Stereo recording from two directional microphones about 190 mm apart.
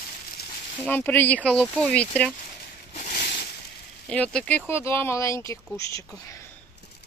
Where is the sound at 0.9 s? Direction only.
10° left (ahead or behind).